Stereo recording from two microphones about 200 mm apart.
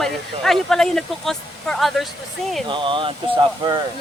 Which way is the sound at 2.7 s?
25° right (ahead or behind).